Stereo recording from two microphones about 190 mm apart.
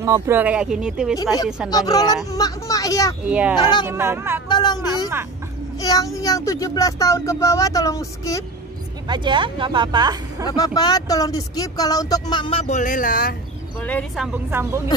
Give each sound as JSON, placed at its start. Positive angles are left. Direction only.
{"t": 0.0, "sound": "speech", "side_deg": -15}
{"t": 1.1, "sound": "speech", "side_deg": 20}
{"t": 3.3, "sound": "a woman's voice", "side_deg": -5}
{"t": 4.5, "sound": "speech", "side_deg": 20}
{"t": 9.0, "sound": "a woman's voice", "side_deg": -25}
{"t": 10.4, "sound": "speech", "side_deg": 20}
{"t": 13.8, "sound": "speech", "side_deg": 10}
{"t": 14.2, "sound": "a woman's voice", "side_deg": -10}